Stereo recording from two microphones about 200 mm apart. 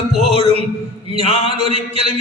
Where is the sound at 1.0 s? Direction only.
30° right (ahead or behind).